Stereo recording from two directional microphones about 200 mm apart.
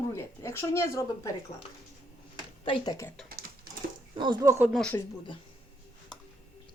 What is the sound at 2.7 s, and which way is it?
Speech, 15° left (ahead or behind).